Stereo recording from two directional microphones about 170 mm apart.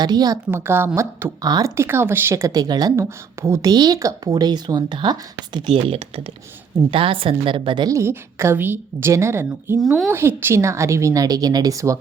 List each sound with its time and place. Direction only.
0.0 s a woman's voice: 25° right (ahead or behind)
9.8 s speech: centre (ahead or behind)
10.1 s a woman's voice: 15° right (ahead or behind)